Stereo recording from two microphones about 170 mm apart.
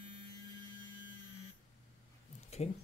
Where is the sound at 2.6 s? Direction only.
40° left (ahead or behind).